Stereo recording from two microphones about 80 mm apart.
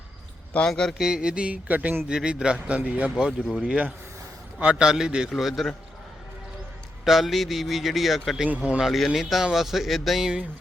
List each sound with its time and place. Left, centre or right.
0.7 s speech: centre
1.0 s a man's voice: centre
7.0 s speech: centre
8.4 s a man's voice: centre
8.8 s speech: centre